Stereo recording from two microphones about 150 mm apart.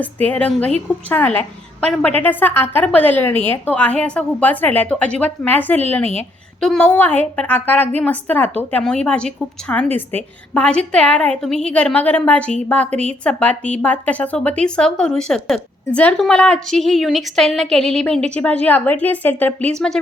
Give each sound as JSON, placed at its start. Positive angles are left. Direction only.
{"t": 0.0, "sound": "a woman's voice", "side_deg": 10}
{"t": 12.9, "sound": "a woman's voice", "side_deg": -45}
{"t": 13.2, "sound": "a woman's voice", "side_deg": 10}